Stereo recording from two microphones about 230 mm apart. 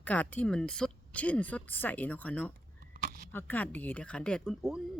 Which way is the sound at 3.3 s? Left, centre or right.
Centre.